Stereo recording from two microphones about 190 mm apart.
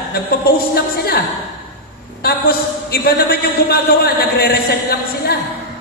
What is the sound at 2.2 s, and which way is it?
A man's voice, 55° left (ahead or behind).